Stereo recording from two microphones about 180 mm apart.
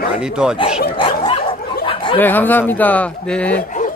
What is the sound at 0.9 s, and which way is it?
Dog, 25° left (ahead or behind).